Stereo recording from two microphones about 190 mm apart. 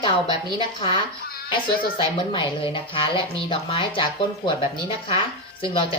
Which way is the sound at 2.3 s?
25° left (ahead or behind).